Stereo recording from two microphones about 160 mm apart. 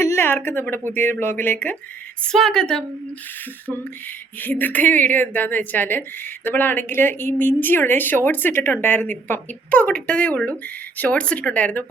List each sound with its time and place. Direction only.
0.0 s a woman's voice: 15° left (ahead or behind)
4.4 s a woman's voice: 10° left (ahead or behind)